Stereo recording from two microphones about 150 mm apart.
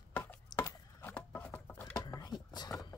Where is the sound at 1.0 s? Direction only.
10° left (ahead or behind).